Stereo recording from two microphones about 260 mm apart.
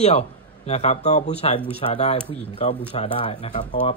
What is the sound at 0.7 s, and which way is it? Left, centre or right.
Speech, left.